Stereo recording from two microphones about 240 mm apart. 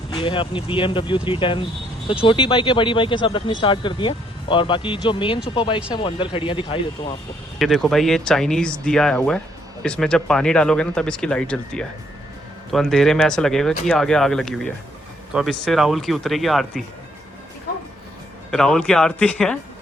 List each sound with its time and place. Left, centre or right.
0.1 s speech: centre
7.6 s speech: centre
18.5 s speech: centre